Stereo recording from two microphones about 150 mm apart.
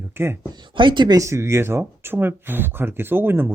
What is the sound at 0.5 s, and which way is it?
Speech, 30° right (ahead or behind).